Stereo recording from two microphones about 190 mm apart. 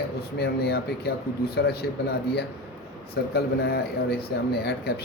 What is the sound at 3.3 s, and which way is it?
A man's voice, 60° left (ahead or behind).